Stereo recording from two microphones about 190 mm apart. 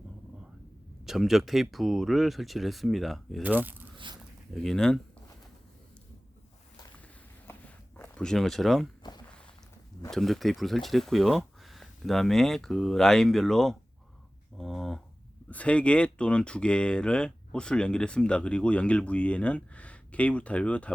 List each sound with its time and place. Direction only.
1.0 s speech: centre (ahead or behind)
3.9 s zipper: 25° right (ahead or behind)
4.6 s speech: 5° left (ahead or behind)
7.5 s walk: 10° left (ahead or behind)
7.9 s speech: 10° left (ahead or behind)
10.1 s speech: centre (ahead or behind)